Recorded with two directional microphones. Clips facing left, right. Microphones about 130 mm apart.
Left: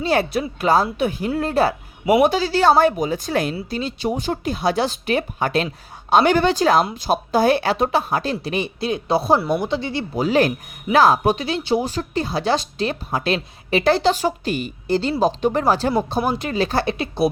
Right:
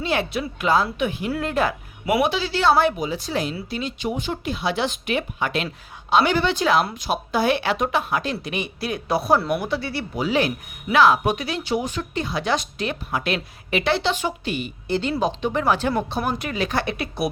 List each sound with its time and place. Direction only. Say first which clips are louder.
0.0 s a woman's voice: left 4 dB; 40° left (ahead or behind)
3.7 s a woman's voice: left 3 dB; 35° left (ahead or behind)
10.2 s a woman's voice: left 4 dB; 45° left (ahead or behind)